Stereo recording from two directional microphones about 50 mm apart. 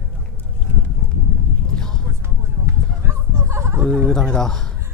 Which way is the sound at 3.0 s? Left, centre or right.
Right.